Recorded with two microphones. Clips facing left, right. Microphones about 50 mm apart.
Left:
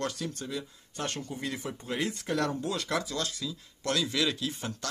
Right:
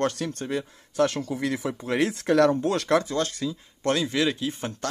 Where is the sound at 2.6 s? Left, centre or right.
Right.